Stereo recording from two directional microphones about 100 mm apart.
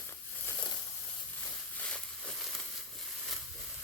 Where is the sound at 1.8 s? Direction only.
10° left (ahead or behind).